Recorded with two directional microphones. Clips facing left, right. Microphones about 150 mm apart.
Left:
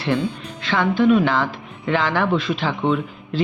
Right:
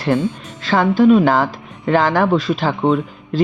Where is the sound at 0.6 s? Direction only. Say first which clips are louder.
Right 5 dB; 40° right (ahead or behind).